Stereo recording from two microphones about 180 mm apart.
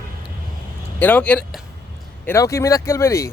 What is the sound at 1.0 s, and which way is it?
Speech, 10° left (ahead or behind).